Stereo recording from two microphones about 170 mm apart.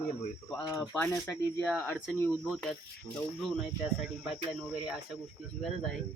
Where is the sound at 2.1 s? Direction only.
10° left (ahead or behind).